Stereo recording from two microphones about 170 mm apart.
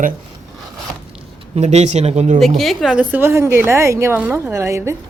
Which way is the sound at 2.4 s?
Centre (ahead or behind).